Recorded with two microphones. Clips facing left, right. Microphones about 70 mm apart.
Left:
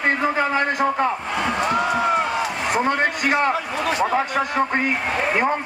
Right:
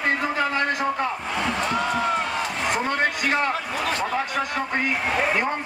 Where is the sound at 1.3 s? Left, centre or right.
Centre.